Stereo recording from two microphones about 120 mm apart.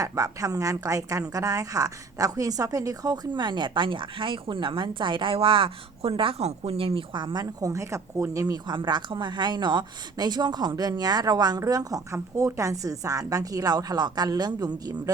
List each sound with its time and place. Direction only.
0.0 s a woman's voice: 30° right (ahead or behind)